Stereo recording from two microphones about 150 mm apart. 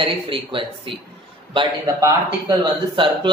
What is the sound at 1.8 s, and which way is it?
Speech, 20° right (ahead or behind).